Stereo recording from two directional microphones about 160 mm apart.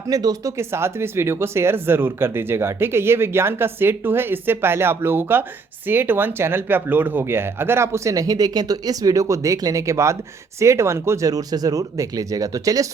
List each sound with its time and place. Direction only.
0.1 s speech: 20° right (ahead or behind)